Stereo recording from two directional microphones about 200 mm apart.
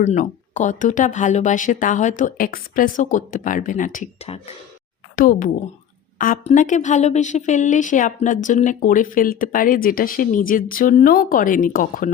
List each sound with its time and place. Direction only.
0.0 s speech: 35° left (ahead or behind)
5.1 s a woman's voice: 45° left (ahead or behind)